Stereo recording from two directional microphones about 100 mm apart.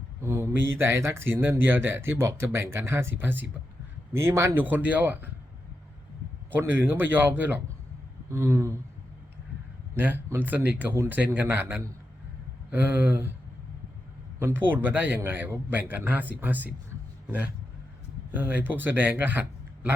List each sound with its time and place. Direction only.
0.2 s speech: 30° right (ahead or behind)
6.5 s speech: 20° right (ahead or behind)
9.9 s speech: 20° right (ahead or behind)
14.3 s speech: 20° right (ahead or behind)
18.3 s speech: 20° right (ahead or behind)